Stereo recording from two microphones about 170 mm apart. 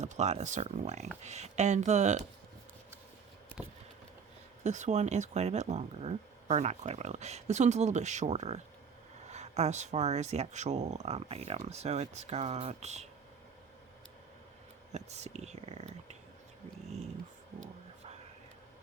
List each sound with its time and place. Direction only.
0.0 s speech: 45° right (ahead or behind)
3.6 s a sound: 10° right (ahead or behind)
4.6 s speech: 45° right (ahead or behind)
14.9 s speech: 40° right (ahead or behind)